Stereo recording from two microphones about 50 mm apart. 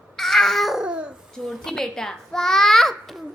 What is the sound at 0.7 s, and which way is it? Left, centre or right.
Babbling, right.